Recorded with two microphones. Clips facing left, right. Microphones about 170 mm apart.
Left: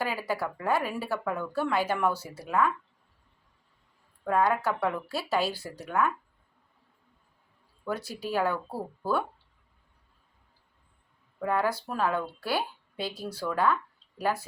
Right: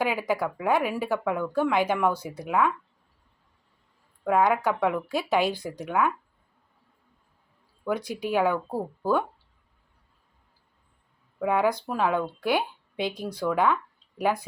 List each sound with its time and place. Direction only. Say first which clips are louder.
0.0 s speech: right 5 dB; 15° right (ahead or behind)
4.3 s speech: right 3 dB; 10° right (ahead or behind)
7.9 s speech: right 5 dB; 15° right (ahead or behind)
11.3 s speech: right 4 dB; 15° right (ahead or behind)